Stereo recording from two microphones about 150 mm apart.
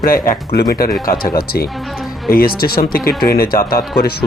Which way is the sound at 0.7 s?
90° left.